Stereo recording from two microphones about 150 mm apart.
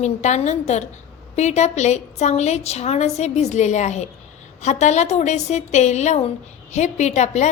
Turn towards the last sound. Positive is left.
turn(degrees=50)  # may be behind; listen again after turning